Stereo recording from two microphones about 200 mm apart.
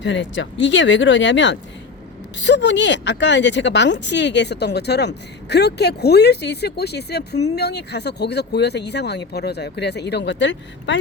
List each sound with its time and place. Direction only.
0.0 s speech: 65° left (ahead or behind)